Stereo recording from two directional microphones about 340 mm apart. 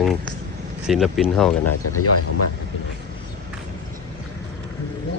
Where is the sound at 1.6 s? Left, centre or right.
Left.